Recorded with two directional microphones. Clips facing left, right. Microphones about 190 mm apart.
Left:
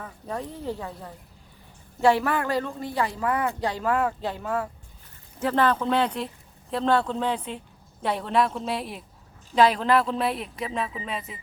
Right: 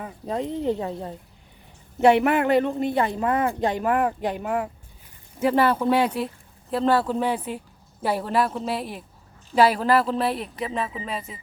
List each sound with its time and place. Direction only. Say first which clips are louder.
0.0 s a woman's voice: right 5 dB; 20° right (ahead or behind); by 11.3 s centre (ahead or behind)